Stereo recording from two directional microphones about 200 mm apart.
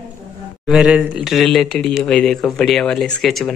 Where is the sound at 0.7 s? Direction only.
5° right (ahead or behind).